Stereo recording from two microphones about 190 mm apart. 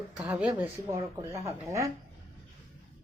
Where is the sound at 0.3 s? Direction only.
10° right (ahead or behind).